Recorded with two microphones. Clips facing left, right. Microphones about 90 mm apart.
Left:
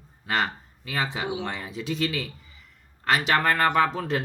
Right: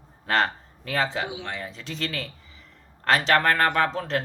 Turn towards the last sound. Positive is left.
turn(degrees=5)  # may be behind; listen again after turning